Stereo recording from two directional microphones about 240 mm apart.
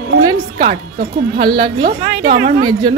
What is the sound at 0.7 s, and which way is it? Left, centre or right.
A woman's voice, right.